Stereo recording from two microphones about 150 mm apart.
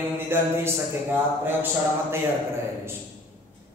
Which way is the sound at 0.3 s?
15° right (ahead or behind).